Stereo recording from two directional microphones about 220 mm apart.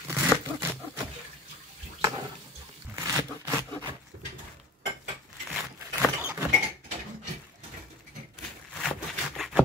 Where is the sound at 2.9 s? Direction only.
15° right (ahead or behind).